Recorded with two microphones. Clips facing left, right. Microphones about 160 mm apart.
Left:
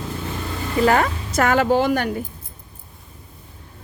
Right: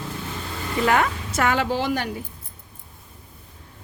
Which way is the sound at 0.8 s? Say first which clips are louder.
Left 2 dB; 40° left (ahead or behind).